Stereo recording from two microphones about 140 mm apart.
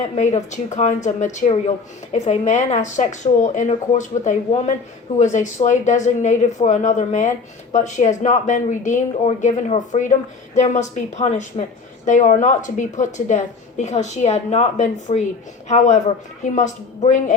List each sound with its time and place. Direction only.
0.2 s a woman's voice: 60° left (ahead or behind)